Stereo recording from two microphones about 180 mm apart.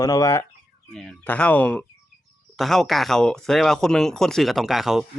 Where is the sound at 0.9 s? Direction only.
Centre (ahead or behind).